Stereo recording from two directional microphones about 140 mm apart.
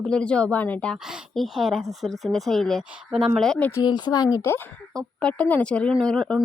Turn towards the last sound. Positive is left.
turn(degrees=5)  # may be behind; listen again after turning